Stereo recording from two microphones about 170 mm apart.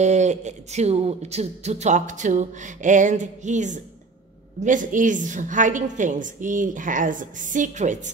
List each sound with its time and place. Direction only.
0.0 s speech: 40° right (ahead or behind)